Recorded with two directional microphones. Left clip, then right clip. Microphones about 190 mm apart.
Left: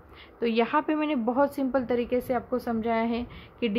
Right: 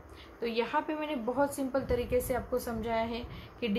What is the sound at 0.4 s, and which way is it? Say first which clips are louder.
A woman's voice: left 6 dB; 50° left (ahead or behind).